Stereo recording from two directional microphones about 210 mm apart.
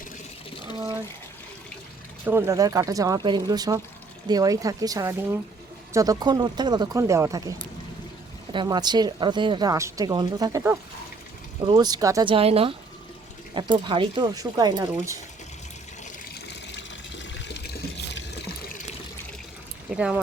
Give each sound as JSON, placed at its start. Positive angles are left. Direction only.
{"t": 2.2, "sound": "speech", "side_deg": -10}
{"t": 8.5, "sound": "a woman's voice", "side_deg": -20}
{"t": 16.3, "sound": "water", "side_deg": 55}
{"t": 19.9, "sound": "speech", "side_deg": -5}